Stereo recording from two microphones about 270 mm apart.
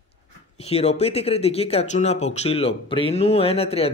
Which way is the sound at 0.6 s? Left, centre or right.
Left.